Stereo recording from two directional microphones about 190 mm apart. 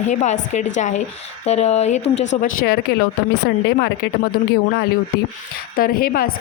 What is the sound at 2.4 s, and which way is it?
Speech, 55° left (ahead or behind).